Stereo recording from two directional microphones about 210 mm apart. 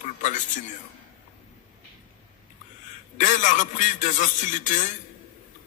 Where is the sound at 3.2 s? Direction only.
35° left (ahead or behind).